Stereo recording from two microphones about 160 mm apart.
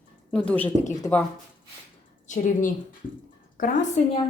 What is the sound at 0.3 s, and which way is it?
Speech, 10° left (ahead or behind).